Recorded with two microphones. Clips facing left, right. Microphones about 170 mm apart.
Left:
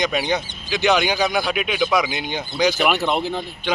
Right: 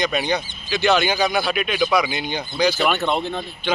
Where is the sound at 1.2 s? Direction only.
Centre (ahead or behind).